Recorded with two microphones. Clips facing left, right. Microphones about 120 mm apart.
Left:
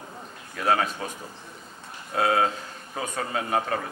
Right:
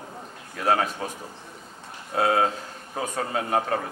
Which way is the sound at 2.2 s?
30° right (ahead or behind).